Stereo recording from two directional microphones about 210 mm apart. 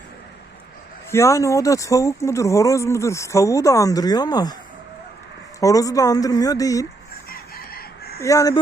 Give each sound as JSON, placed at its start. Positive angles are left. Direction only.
{"t": 1.1, "sound": "speech", "side_deg": 15}
{"t": 5.5, "sound": "speech", "side_deg": 15}
{"t": 7.3, "sound": "chicken", "side_deg": 45}
{"t": 8.2, "sound": "speech", "side_deg": 15}